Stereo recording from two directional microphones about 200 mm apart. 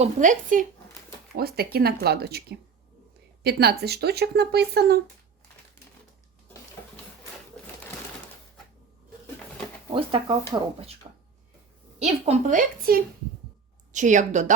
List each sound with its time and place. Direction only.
0.0 s a woman's voice: 40° right (ahead or behind)
1.4 s speech: 50° right (ahead or behind)
9.9 s speech: 25° right (ahead or behind)
11.9 s a woman's voice: 35° right (ahead or behind)